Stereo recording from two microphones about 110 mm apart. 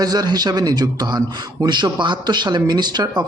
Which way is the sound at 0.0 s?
35° right (ahead or behind).